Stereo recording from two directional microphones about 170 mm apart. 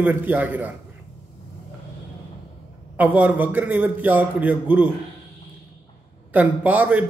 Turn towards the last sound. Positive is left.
turn(degrees=-10)  # may be behind; listen again after turning